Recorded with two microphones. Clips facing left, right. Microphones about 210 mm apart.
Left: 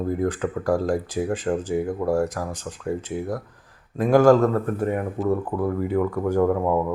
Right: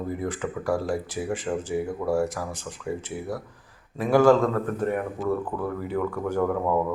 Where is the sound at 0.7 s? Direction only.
15° left (ahead or behind).